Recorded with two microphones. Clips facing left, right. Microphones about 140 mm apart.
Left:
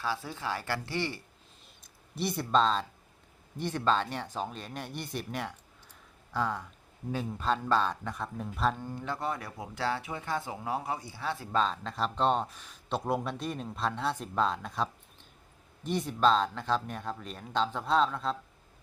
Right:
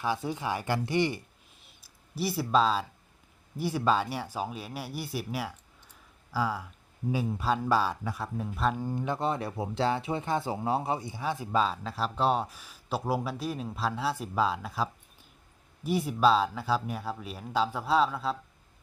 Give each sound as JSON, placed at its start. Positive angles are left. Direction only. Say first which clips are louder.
{"t": 0.0, "sound": "speech", "louder": "right 4 dB", "side_deg": -15}
{"t": 1.8, "sound": "speech", "louder": "right 1 dB", "side_deg": -5}
{"t": 8.8, "sound": "speech", "louder": "right 5 dB", "side_deg": -15}